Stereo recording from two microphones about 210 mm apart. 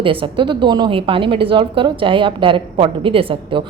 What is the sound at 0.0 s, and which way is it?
A woman's voice, 25° right (ahead or behind).